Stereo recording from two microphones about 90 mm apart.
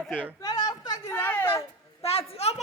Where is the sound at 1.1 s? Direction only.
20° left (ahead or behind).